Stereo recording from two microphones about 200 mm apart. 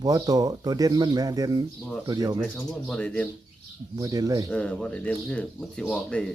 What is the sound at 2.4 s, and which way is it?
Speech, 5° left (ahead or behind).